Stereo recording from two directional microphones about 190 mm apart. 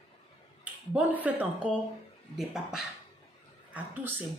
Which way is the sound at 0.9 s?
10° right (ahead or behind).